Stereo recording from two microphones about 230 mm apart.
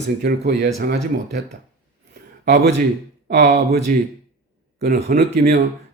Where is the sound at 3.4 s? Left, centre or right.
Right.